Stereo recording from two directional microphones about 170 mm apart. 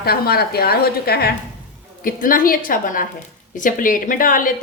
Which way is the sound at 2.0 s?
55° left (ahead or behind).